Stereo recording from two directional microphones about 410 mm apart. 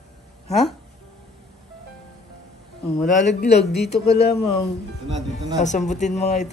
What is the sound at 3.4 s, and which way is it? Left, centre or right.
Speech, left.